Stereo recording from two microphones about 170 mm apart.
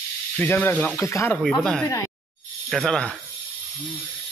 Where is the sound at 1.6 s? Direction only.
5° left (ahead or behind).